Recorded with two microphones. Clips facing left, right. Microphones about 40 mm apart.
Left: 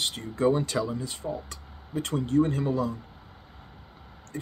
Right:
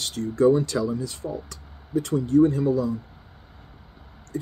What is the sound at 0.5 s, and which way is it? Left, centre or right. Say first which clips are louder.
Speech: right 2 dB; left.